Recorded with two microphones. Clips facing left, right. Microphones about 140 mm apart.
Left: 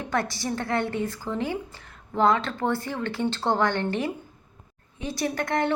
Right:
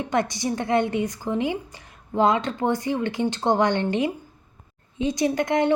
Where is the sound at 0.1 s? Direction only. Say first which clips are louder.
Right 2 dB; 20° right (ahead or behind).